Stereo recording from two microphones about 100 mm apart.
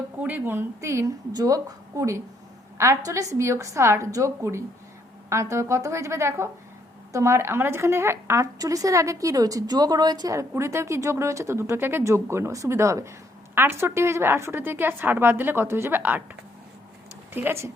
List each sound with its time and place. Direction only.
0.2 s a woman's voice: 20° right (ahead or behind)
17.3 s a woman's voice: 25° right (ahead or behind)